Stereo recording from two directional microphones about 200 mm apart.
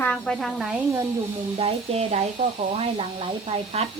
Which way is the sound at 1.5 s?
30° right (ahead or behind).